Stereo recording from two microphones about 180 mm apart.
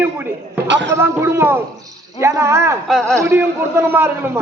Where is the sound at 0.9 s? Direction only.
15° right (ahead or behind).